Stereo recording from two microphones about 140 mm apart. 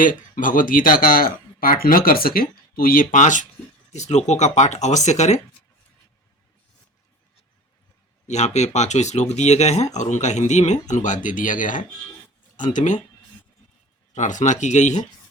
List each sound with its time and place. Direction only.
0.0 s speech: 75° left (ahead or behind); by 5.4 s 55° left (ahead or behind)
8.3 s speech: 55° left (ahead or behind)
14.1 s speech: 60° left (ahead or behind)